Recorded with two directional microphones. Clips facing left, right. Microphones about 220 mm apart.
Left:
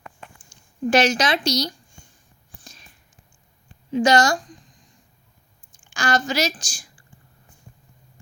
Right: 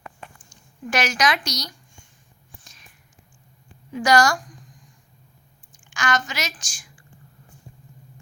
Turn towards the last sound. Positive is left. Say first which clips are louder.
# left 4 dB
turn(degrees=35)  # may be behind; listen again after turning